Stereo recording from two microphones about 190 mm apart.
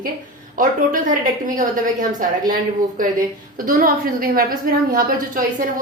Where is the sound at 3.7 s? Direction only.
50° right (ahead or behind).